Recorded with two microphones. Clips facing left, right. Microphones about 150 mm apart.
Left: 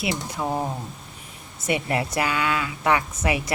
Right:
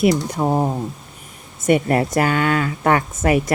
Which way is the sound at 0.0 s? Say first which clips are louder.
Right 10 dB; 45° right (ahead or behind).